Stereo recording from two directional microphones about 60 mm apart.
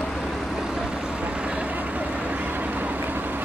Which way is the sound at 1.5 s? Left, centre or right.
Right.